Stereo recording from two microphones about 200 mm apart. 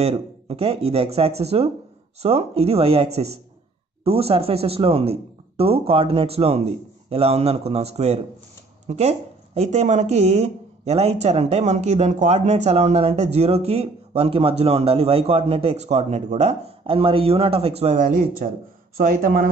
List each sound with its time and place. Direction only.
0.0 s speech: 30° right (ahead or behind); by 19.5 s 45° right (ahead or behind)